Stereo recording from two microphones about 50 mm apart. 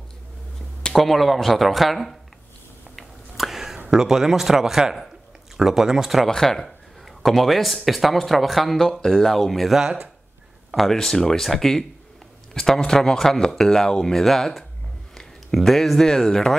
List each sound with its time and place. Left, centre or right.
0.9 s speech: centre
3.0 s a sound: centre
3.9 s speech: centre
6.2 s speech: centre
9.8 s speech: centre
10.9 s speech: centre